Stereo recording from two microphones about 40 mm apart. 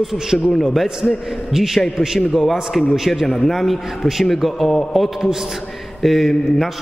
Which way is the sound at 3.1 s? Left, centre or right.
Centre.